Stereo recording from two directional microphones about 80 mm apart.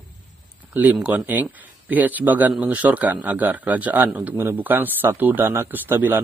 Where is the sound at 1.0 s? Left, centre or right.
Right.